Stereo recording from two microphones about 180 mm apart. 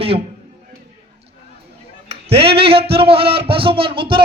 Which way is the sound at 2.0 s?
30° right (ahead or behind).